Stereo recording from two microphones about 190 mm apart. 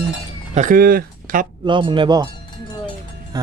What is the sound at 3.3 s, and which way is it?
Speech, 20° right (ahead or behind).